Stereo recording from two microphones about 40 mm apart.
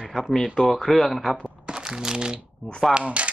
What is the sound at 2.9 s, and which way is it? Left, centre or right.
Speech, right.